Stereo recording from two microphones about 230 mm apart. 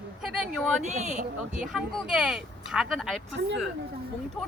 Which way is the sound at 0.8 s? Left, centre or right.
Right.